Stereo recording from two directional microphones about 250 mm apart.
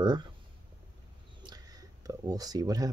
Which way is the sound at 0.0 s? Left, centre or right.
Centre.